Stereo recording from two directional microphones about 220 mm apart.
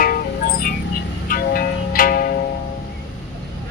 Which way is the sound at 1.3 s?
40° left (ahead or behind).